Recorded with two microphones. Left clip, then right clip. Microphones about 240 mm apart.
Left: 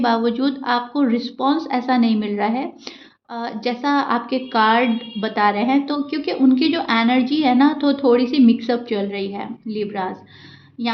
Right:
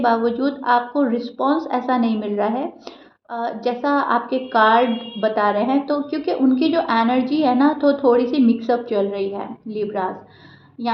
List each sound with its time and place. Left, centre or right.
0.0 s a woman's voice: left
3.3 s a woman's voice: left